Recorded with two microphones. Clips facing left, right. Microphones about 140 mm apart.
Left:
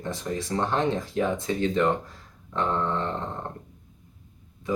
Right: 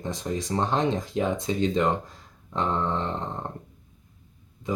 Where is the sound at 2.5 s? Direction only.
20° right (ahead or behind).